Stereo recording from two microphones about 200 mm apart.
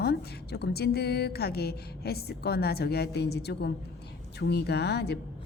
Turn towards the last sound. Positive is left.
turn(degrees=55)  # may be behind; listen again after turning